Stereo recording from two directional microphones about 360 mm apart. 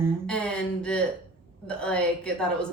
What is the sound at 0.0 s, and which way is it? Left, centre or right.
Speech, centre.